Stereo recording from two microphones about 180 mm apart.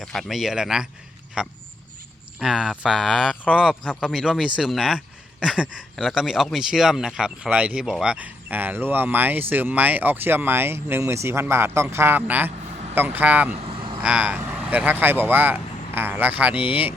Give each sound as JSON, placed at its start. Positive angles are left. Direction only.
{"t": 0.0, "sound": "speech", "side_deg": 0}
{"t": 13.6, "sound": "vehicle", "side_deg": -30}
{"t": 14.0, "sound": "speech", "side_deg": -5}